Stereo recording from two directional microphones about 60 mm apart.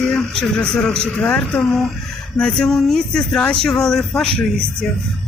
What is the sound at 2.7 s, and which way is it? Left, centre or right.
Speech, centre.